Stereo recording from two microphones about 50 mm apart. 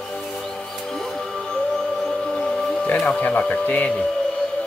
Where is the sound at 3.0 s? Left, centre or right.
Left.